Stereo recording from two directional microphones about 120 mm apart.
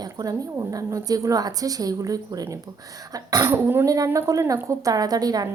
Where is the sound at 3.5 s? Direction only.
20° right (ahead or behind).